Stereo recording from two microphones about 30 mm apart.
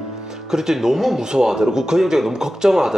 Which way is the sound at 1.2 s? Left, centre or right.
Right.